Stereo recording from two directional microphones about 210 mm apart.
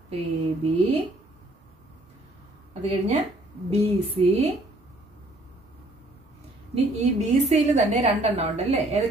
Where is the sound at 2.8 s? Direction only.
30° right (ahead or behind).